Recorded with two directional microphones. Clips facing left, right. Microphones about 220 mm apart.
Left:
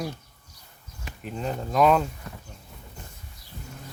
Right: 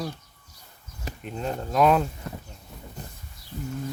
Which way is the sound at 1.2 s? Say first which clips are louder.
Even; centre (ahead or behind).